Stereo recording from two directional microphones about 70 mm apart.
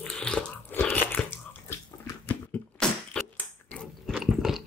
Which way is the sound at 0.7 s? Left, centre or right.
Left.